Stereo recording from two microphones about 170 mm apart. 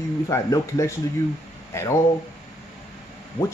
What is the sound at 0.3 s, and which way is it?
Speech, 20° left (ahead or behind).